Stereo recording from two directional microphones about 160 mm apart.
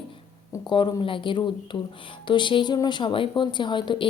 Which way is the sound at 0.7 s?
30° left (ahead or behind).